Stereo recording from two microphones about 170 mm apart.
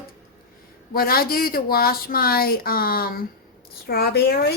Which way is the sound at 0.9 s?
60° left (ahead or behind).